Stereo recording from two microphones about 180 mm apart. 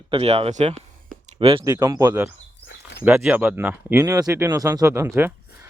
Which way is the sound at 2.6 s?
75° left (ahead or behind).